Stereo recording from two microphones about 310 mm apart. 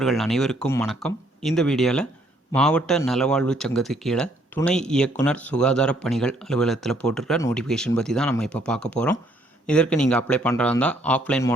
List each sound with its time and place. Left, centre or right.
0.0 s speech: centre